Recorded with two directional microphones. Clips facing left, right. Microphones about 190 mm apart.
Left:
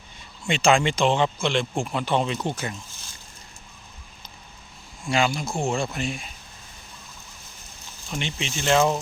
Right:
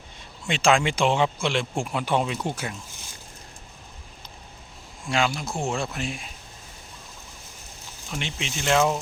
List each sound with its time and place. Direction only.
0.4 s speech: centre (ahead or behind)
5.0 s speech: centre (ahead or behind)
8.1 s speech: 5° right (ahead or behind)